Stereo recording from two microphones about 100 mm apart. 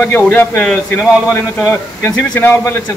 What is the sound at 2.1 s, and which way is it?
Speech, 15° left (ahead or behind).